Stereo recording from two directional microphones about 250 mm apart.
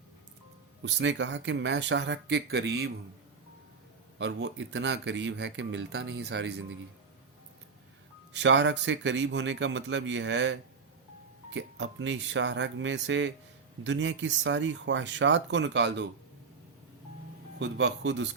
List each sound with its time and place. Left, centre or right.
0.8 s speech: right
4.2 s speech: right
8.3 s speech: right
17.6 s speech: right